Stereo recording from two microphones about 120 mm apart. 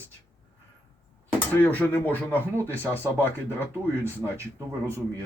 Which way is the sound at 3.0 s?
20° left (ahead or behind).